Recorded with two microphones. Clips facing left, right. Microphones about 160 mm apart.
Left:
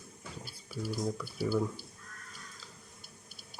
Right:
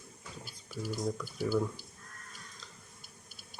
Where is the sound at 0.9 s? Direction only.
5° left (ahead or behind).